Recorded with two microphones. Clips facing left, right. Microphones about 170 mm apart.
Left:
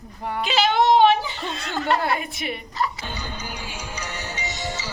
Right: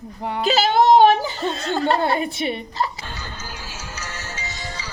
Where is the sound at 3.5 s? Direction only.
5° right (ahead or behind).